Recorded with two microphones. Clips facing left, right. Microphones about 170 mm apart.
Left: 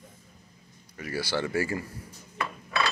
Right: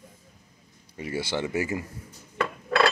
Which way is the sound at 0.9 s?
25° right (ahead or behind).